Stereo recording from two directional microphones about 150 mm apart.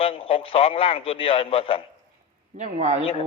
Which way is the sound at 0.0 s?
40° left (ahead or behind).